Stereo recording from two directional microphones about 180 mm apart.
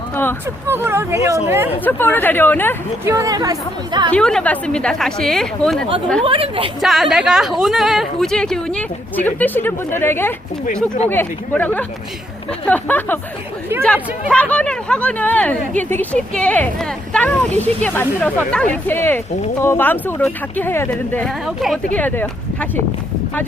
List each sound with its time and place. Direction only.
0.7 s speech: 15° right (ahead or behind)
1.8 s speech: 10° left (ahead or behind)
3.0 s speech: 15° right (ahead or behind)
4.1 s a woman's voice: 5° left (ahead or behind)
6.2 s speech: 30° right (ahead or behind)
6.8 s a woman's voice: centre (ahead or behind)